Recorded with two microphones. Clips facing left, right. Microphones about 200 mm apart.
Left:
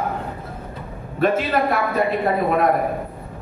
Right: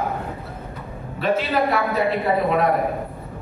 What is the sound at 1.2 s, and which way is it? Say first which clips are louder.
Speech: left 2 dB; 50° left (ahead or behind).